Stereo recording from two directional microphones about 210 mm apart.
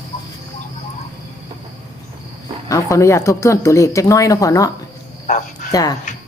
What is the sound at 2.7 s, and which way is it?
Speech, 15° left (ahead or behind).